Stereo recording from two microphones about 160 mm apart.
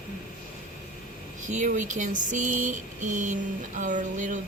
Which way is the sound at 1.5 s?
50° right (ahead or behind).